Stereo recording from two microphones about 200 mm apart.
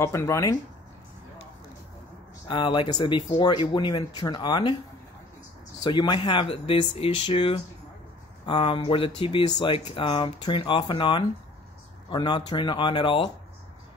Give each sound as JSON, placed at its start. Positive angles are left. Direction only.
{"t": 0.0, "sound": "speech", "side_deg": 15}
{"t": 2.4, "sound": "speech", "side_deg": 25}
{"t": 5.9, "sound": "speech", "side_deg": 25}